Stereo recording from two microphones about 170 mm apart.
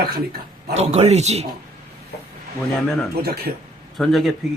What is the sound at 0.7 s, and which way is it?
Speech, 35° right (ahead or behind).